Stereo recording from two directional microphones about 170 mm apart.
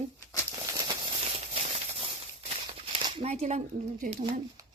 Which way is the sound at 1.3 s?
35° right (ahead or behind).